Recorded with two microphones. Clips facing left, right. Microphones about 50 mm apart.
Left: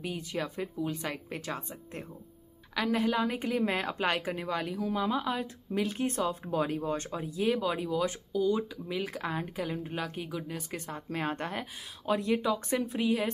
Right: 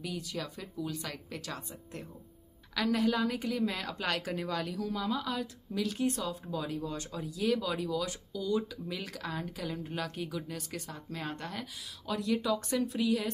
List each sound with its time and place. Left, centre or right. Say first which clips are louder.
0.0 s a woman's voice: left 3 dB; left
2.7 s a woman's voice: left 1 dB; centre
10.9 s a woman's voice: left 9 dB; left